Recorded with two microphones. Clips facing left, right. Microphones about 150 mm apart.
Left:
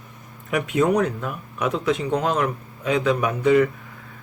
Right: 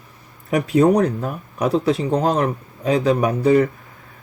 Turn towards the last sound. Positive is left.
turn(degrees=-35)  # may be behind; listen again after turning